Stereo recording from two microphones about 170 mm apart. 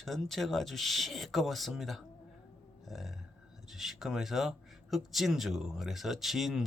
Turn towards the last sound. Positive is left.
turn(degrees=0)  # may be behind; listen again after turning